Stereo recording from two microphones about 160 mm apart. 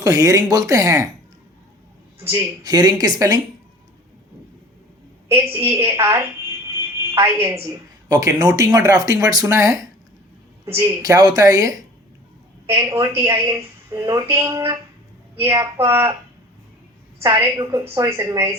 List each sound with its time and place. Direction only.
0.0 s a woman's voice: 20° right (ahead or behind)
2.1 s a woman's voice: 15° right (ahead or behind)
5.3 s a woman's voice: 15° right (ahead or behind)
17.4 s a woman's voice: 20° right (ahead or behind)